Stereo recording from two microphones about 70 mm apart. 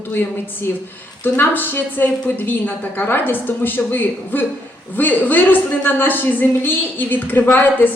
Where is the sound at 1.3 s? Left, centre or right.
Left.